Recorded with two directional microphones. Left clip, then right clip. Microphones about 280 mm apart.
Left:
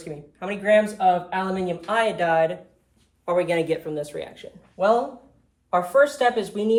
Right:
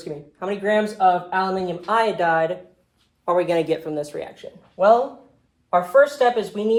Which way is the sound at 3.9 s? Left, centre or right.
Right.